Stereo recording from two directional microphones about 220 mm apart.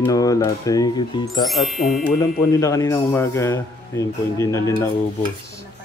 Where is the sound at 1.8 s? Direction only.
35° left (ahead or behind).